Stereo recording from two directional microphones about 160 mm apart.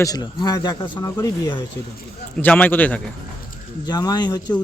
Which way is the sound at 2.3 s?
10° left (ahead or behind).